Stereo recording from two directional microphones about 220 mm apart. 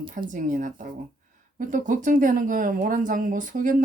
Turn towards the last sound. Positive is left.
turn(degrees=-35)  # may be behind; listen again after turning